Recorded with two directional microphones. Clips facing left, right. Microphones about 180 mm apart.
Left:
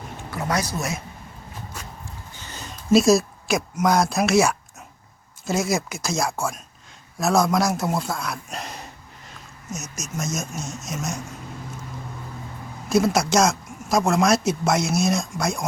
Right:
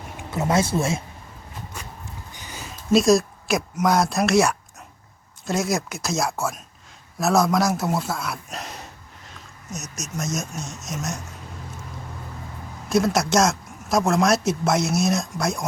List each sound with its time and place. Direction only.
0.3 s speech: 25° right (ahead or behind)
2.3 s a sound: 10° right (ahead or behind)
5.5 s a man's voice: centre (ahead or behind)
12.9 s speech: centre (ahead or behind)